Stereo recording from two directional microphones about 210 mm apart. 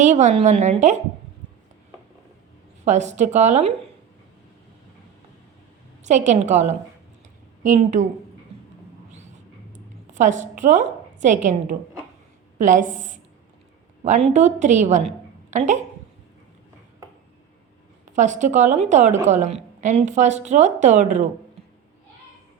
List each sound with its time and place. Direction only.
0.0 s a woman's voice: 35° right (ahead or behind)
2.8 s a woman's voice: 35° right (ahead or behind)
6.1 s a woman's voice: 35° right (ahead or behind)
9.7 s a sound: 35° right (ahead or behind)
12.5 s a woman's voice: 35° right (ahead or behind)
18.1 s a woman's voice: 35° right (ahead or behind)